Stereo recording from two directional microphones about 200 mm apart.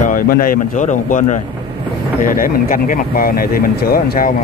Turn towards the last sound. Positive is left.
turn(degrees=45)  # may be behind; listen again after turning